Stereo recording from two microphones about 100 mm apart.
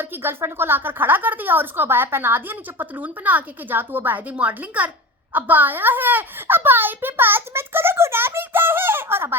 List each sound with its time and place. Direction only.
0.0 s a woman's voice: 20° right (ahead or behind)